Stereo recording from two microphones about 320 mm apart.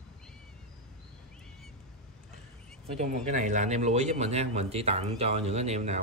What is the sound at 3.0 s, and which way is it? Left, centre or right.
Speech, right.